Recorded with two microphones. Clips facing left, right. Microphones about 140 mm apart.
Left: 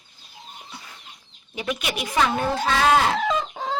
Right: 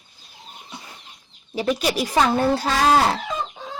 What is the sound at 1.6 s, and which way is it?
Speech, 35° right (ahead or behind).